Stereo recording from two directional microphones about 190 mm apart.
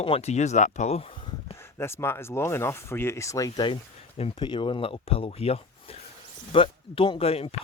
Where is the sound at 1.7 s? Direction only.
15° left (ahead or behind).